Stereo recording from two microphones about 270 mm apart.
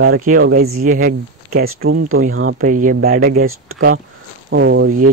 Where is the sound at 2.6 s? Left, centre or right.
Right.